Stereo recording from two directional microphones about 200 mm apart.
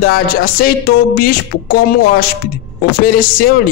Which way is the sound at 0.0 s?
45° left (ahead or behind).